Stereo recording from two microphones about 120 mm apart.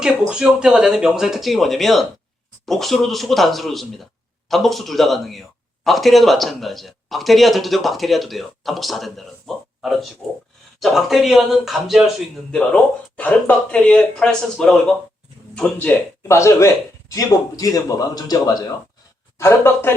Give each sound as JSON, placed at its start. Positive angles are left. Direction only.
{"t": 0.0, "sound": "speech", "side_deg": -5}
{"t": 16.2, "sound": "a man's voice", "side_deg": 25}
{"t": 19.4, "sound": "speech", "side_deg": 20}